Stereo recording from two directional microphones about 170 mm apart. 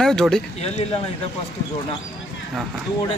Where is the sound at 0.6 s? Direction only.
40° left (ahead or behind).